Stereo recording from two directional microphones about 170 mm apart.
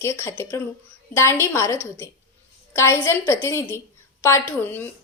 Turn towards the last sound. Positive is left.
turn(degrees=15)  # may be behind; listen again after turning